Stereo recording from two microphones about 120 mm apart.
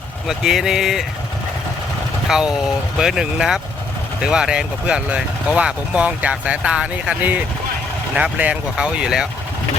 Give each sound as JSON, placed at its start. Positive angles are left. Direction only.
{"t": 0.3, "sound": "speech", "side_deg": -5}
{"t": 2.3, "sound": "speech", "side_deg": -5}